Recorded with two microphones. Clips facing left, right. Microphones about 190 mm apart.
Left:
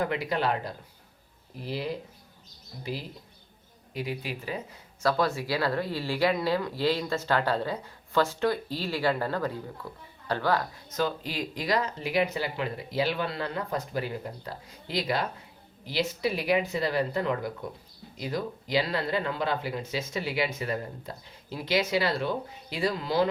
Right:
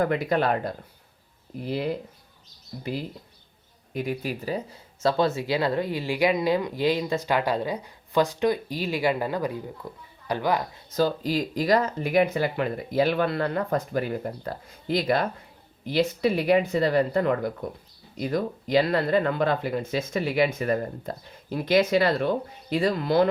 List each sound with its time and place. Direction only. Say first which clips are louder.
0.0 s speech: right 5 dB; 50° right (ahead or behind)
3.9 s speech: right 5 dB; 45° right (ahead or behind)
4.9 s speech: right 3 dB; 25° right (ahead or behind)
10.8 s speech: right 10 dB; 35° right (ahead or behind); by 23.3 s 55° right (ahead or behind)